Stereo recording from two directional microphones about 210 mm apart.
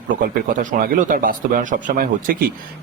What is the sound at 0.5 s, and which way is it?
Speech, 35° right (ahead or behind).